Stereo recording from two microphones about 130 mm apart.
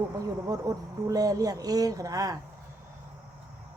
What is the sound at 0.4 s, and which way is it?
A woman's voice, 30° right (ahead or behind).